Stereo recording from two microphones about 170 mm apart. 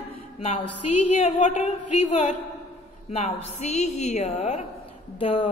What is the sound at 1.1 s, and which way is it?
A woman's voice, 45° left (ahead or behind).